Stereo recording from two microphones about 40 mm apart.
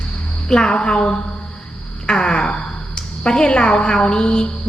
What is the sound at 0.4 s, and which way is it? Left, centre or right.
A woman's voice, left.